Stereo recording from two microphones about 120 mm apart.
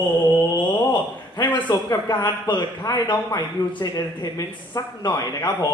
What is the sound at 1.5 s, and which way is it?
Speech, 40° left (ahead or behind).